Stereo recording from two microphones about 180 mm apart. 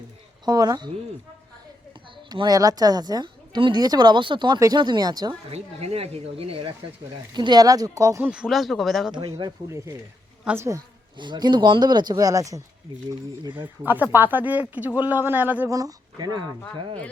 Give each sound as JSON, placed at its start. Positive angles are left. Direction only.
{"t": 0.4, "sound": "speech", "side_deg": -20}
{"t": 2.3, "sound": "speech", "side_deg": -20}
{"t": 5.5, "sound": "speech", "side_deg": -35}
{"t": 8.3, "sound": "speech", "side_deg": -5}
{"t": 9.3, "sound": "speech", "side_deg": -15}
{"t": 11.2, "sound": "speech", "side_deg": -25}